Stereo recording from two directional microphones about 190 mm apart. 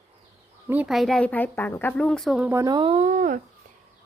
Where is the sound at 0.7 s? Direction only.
5° right (ahead or behind); by 3.4 s 40° right (ahead or behind).